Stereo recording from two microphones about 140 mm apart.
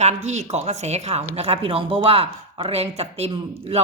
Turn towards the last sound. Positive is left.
turn(degrees=-45)  # may be behind; listen again after turning